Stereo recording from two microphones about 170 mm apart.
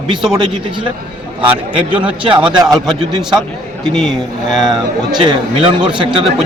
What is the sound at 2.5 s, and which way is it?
Speech, 25° right (ahead or behind).